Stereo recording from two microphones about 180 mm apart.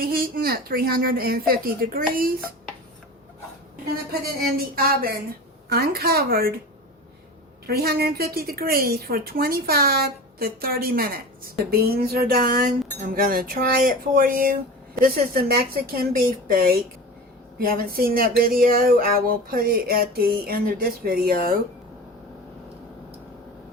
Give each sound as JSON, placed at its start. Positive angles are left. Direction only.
{"t": 0.0, "sound": "speech", "side_deg": -55}
{"t": 4.4, "sound": "speech", "side_deg": -55}
{"t": 7.7, "sound": "speech", "side_deg": -60}